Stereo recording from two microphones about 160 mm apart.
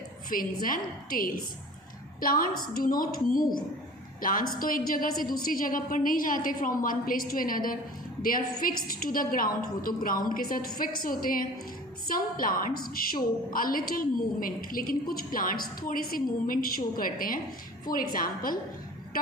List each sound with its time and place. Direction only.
0.3 s a woman's voice: 60° left (ahead or behind)